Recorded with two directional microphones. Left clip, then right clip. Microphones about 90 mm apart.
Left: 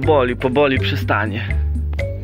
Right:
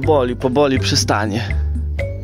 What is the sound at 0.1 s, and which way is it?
Speech, 80° right.